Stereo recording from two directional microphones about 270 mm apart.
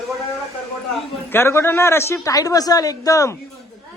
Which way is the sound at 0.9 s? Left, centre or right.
Centre.